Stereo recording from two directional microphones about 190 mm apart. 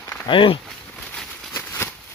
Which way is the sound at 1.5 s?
15° left (ahead or behind).